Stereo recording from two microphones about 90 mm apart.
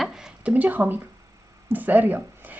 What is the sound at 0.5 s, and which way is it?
Speech, 20° right (ahead or behind).